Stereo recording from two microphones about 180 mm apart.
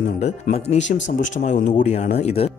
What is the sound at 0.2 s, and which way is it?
Speech, 35° left (ahead or behind).